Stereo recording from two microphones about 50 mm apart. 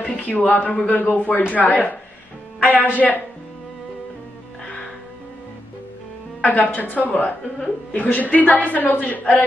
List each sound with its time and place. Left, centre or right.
0.0 s a woman's voice: left
6.4 s a woman's voice: left